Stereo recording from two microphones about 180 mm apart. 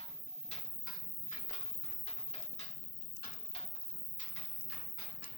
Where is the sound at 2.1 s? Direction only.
35° left (ahead or behind).